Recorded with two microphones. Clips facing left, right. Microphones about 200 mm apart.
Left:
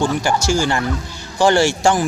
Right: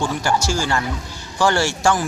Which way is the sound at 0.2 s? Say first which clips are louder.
Left 3 dB; 15° left (ahead or behind).